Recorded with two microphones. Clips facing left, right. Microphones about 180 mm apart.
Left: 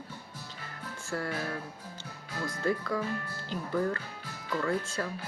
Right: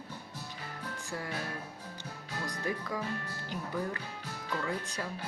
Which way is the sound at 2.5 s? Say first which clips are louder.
Left 6 dB; 15° right (ahead or behind).